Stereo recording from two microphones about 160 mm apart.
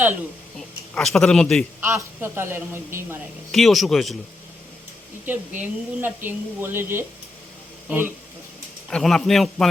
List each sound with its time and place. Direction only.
0.9 s a man's voice: 5° left (ahead or behind)
1.8 s a woman's voice: 15° right (ahead or behind)
3.5 s a man's voice: centre (ahead or behind)
5.2 s a woman's voice: 10° right (ahead or behind)
8.9 s a man's voice: 5° left (ahead or behind)